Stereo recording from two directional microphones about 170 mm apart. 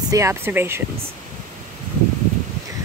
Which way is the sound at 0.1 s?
15° right (ahead or behind).